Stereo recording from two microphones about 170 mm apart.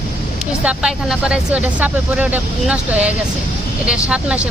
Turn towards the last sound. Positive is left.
turn(degrees=-5)  # may be behind; listen again after turning